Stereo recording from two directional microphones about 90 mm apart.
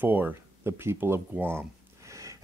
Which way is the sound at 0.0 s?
20° right (ahead or behind).